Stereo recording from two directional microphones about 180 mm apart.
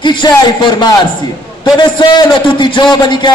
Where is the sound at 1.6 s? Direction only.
25° left (ahead or behind).